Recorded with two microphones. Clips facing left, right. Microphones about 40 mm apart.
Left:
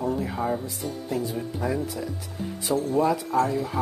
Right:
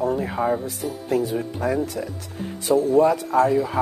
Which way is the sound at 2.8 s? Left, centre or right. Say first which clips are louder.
Right 6 dB; right.